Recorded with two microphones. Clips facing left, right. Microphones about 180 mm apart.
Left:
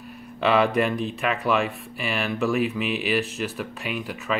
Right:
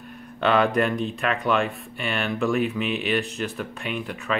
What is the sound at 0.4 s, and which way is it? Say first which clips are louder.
Speech: even; centre (ahead or behind).